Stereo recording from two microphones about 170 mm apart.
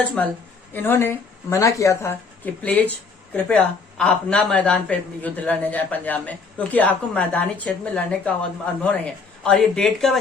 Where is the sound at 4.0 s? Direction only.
5° left (ahead or behind).